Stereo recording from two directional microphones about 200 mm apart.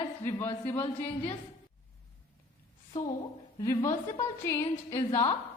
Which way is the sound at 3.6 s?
15° left (ahead or behind).